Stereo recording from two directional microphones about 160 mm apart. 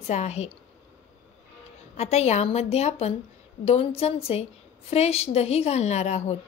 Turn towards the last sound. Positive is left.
turn(degrees=45)  # may be behind; listen again after turning